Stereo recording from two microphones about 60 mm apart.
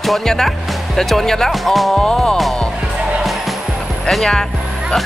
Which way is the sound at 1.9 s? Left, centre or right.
Centre.